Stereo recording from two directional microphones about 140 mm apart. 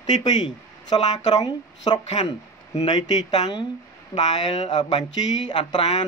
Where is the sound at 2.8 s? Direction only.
30° left (ahead or behind).